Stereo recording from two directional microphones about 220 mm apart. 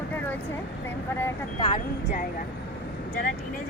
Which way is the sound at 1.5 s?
25° left (ahead or behind).